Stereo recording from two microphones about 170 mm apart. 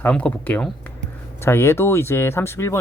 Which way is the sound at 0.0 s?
5° left (ahead or behind).